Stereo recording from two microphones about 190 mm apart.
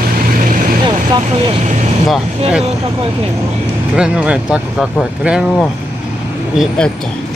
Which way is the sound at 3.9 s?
5° right (ahead or behind).